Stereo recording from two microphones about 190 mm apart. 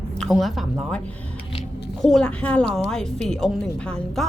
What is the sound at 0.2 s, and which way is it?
A woman's voice, centre (ahead or behind).